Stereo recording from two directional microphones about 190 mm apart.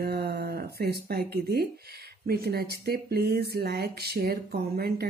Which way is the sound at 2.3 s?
55° right (ahead or behind).